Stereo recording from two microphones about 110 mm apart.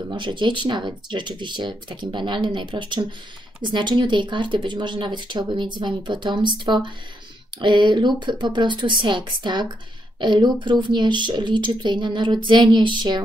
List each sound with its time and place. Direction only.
0.1 s speech: 45° right (ahead or behind)